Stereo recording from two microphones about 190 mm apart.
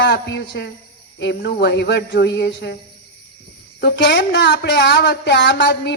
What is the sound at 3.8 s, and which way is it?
A woman's voice, 60° left (ahead or behind).